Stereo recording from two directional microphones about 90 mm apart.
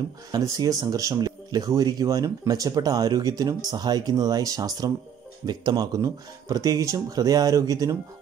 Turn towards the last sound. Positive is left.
turn(degrees=-35)  # may be behind; listen again after turning